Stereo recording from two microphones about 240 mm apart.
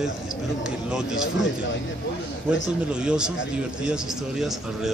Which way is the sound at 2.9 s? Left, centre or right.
Centre.